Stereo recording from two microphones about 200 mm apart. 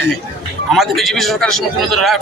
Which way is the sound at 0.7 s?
Centre (ahead or behind).